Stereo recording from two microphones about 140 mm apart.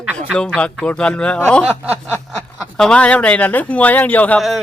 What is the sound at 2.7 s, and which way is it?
Speech, 5° left (ahead or behind).